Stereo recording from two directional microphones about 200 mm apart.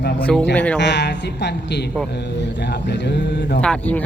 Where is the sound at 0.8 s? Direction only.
60° left (ahead or behind).